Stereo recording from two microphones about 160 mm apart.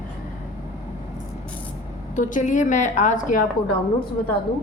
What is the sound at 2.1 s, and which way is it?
A woman's voice, 55° left (ahead or behind).